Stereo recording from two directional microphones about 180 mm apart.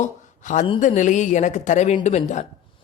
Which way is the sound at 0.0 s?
45° left (ahead or behind).